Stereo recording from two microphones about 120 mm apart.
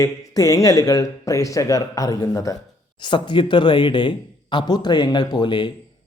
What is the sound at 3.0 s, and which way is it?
Speech, 40° left (ahead or behind).